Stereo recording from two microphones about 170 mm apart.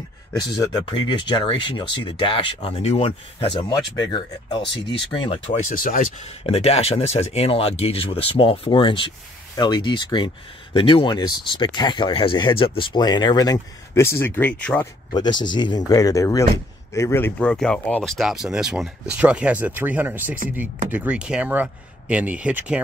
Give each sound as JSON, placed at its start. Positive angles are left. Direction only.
{"t": 0.4, "sound": "speech", "side_deg": 25}
{"t": 5.6, "sound": "speech", "side_deg": 55}
{"t": 6.4, "sound": "speech", "side_deg": 35}
{"t": 15.4, "sound": "speech", "side_deg": 25}